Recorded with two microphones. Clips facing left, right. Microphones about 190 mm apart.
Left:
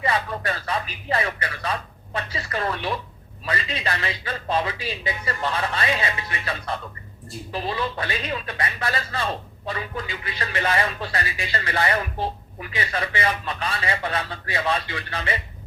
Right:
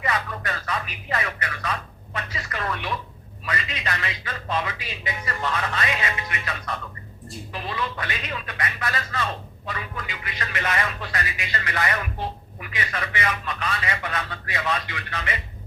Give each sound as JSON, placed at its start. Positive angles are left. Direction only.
{"t": 0.0, "sound": "a man's voice", "side_deg": 30}